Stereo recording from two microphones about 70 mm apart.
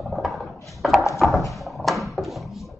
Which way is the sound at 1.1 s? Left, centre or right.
Centre.